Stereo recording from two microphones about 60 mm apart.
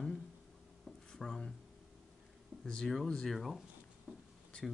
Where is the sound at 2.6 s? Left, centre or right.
Centre.